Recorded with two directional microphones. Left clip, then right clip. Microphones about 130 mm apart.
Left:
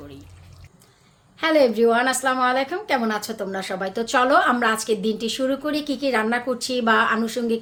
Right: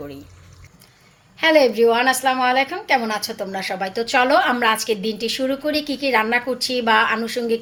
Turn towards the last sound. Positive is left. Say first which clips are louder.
# right 2 dB
turn(degrees=20)  # may be behind; listen again after turning